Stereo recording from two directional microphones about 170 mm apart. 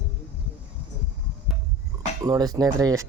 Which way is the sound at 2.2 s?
20° right (ahead or behind).